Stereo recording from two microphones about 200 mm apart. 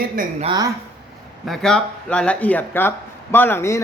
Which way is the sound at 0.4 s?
20° right (ahead or behind).